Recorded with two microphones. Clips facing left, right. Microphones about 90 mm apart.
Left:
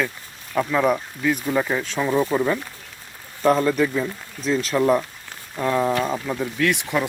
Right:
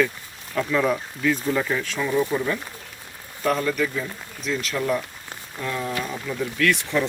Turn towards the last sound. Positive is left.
turn(degrees=15)  # may be behind; listen again after turning